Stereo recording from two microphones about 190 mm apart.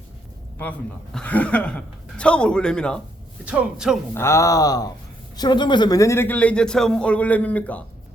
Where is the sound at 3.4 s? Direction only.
5° right (ahead or behind).